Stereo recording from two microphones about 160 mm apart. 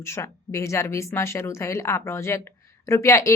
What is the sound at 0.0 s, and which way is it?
Speech, 15° left (ahead or behind).